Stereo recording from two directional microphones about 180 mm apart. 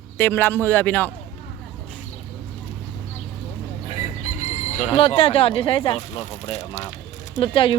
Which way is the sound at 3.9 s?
40° left (ahead or behind).